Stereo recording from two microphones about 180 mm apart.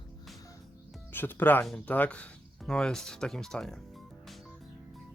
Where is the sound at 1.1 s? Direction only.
10° left (ahead or behind).